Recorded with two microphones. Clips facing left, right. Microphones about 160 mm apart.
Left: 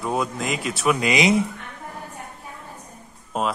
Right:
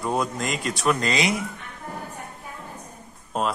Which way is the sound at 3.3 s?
5° left (ahead or behind).